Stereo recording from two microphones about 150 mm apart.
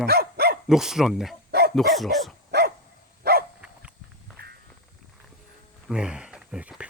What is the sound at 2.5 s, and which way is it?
Dog, 90° right.